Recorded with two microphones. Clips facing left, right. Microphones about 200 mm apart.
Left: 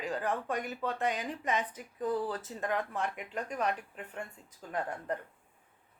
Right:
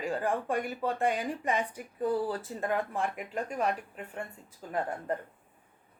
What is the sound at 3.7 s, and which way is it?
Speech, 40° right (ahead or behind).